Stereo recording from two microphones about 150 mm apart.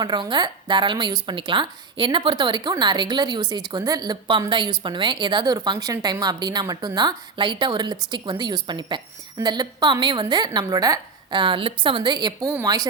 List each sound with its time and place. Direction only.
0.0 s a woman's voice: 30° right (ahead or behind)